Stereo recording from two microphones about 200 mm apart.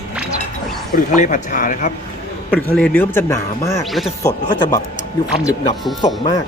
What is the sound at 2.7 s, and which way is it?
Speech, 10° left (ahead or behind).